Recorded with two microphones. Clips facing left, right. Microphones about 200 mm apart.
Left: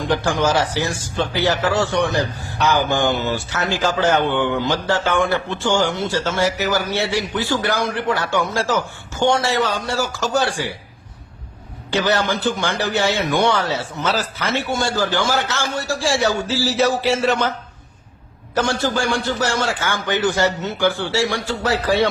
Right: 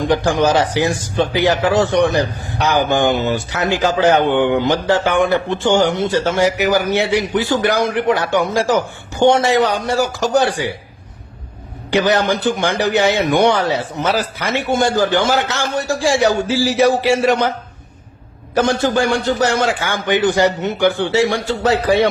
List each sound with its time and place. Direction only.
0.0 s speech: 15° right (ahead or behind)
11.9 s speech: 15° right (ahead or behind)
18.5 s speech: 15° right (ahead or behind)